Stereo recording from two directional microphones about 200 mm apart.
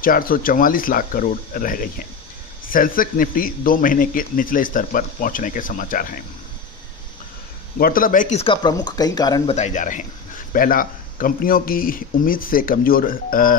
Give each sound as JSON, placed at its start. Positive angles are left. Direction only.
{"t": 0.0, "sound": "a man's voice", "side_deg": 45}
{"t": 7.8, "sound": "speech", "side_deg": 45}
{"t": 9.6, "sound": "a man's voice", "side_deg": 40}